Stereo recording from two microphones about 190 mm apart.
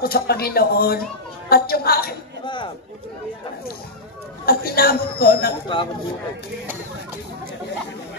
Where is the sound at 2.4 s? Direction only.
25° left (ahead or behind).